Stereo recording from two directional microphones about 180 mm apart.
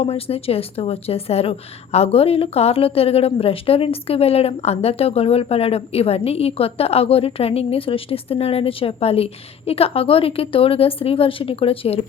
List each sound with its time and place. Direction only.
0.0 s a woman's voice: 35° left (ahead or behind)